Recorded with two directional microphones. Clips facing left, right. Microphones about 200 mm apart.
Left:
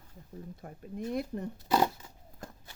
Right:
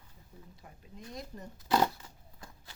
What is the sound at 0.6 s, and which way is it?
Speech, 55° left (ahead or behind).